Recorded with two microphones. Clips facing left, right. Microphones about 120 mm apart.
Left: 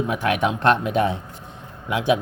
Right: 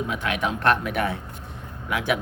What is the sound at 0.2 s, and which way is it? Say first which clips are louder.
Speech: left 5 dB; 30° left (ahead or behind).